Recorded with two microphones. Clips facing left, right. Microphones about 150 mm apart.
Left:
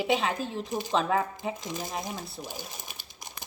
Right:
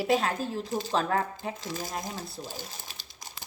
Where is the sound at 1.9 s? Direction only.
15° left (ahead or behind).